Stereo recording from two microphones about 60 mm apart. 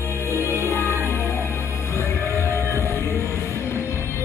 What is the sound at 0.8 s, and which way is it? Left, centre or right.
Music, right.